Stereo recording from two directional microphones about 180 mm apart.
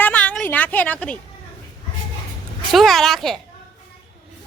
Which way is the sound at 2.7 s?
Centre (ahead or behind).